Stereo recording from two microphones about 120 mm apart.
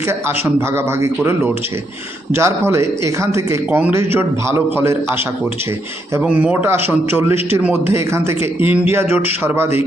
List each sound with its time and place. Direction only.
0.1 s a man's voice: 20° right (ahead or behind)
6.1 s a man's voice: 10° right (ahead or behind)